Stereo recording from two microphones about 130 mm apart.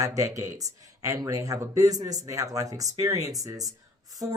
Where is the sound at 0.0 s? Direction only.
25° right (ahead or behind).